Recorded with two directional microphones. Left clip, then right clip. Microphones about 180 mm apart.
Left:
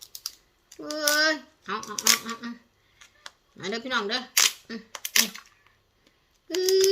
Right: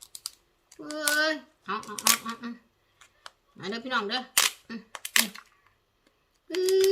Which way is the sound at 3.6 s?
25° right (ahead or behind).